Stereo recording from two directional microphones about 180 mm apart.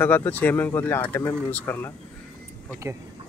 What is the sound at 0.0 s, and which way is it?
Speech, 10° left (ahead or behind).